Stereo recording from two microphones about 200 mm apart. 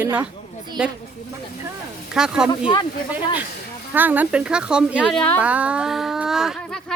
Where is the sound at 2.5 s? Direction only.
20° left (ahead or behind).